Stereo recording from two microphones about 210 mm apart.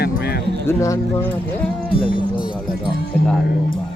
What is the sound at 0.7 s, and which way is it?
Speech, 15° left (ahead or behind).